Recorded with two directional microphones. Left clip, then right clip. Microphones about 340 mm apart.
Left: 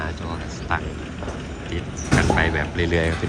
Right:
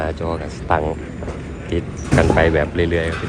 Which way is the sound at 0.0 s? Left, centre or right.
Centre.